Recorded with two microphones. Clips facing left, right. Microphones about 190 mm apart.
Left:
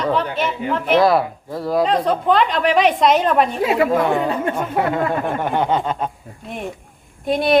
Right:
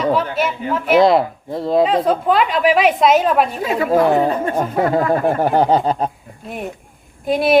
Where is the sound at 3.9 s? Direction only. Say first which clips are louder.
Right 4 dB; 35° right (ahead or behind).